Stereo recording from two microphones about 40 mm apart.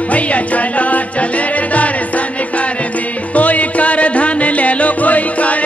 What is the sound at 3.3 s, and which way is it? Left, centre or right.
Music, left.